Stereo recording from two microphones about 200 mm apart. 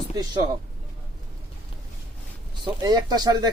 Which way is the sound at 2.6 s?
20° right (ahead or behind).